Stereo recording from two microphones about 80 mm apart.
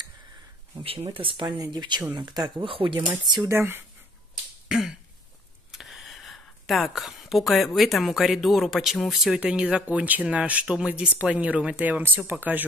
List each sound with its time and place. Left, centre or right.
1.2 s speech: right
1.7 s speech: right
3.4 s speech: right
4.6 s throat clearing: centre
5.7 s speech: centre; by 12.6 s right